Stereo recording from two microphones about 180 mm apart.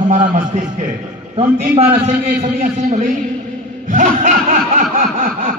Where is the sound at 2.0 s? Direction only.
40° right (ahead or behind).